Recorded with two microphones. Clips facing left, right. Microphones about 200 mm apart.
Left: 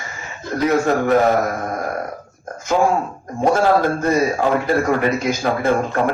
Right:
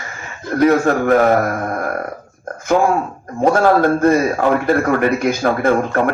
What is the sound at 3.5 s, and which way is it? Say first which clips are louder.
A man's voice: right 3 dB; 55° right (ahead or behind).